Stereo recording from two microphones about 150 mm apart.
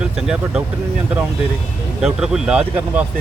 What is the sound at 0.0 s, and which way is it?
Speech, 5° right (ahead or behind).